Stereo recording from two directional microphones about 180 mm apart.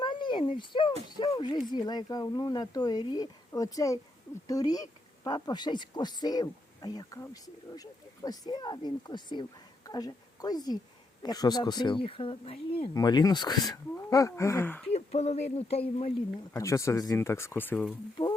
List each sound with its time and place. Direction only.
0.0 s speech: 25° left (ahead or behind); by 14.8 s 10° left (ahead or behind)
14.9 s speech: 35° left (ahead or behind)
16.5 s speech: 15° left (ahead or behind)